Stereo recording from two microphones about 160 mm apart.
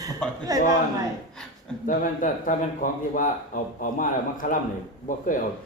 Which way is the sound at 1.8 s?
55° left (ahead or behind).